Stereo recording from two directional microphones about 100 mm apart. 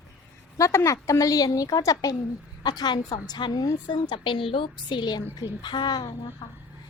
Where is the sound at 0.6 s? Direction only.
30° left (ahead or behind).